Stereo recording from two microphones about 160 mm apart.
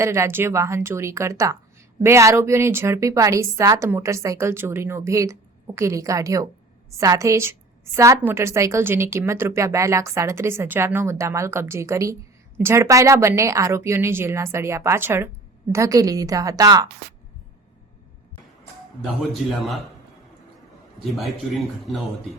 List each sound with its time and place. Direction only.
0.0 s a woman's voice: 15° right (ahead or behind)
19.3 s a man's voice: centre (ahead or behind)
21.0 s a man's voice: centre (ahead or behind)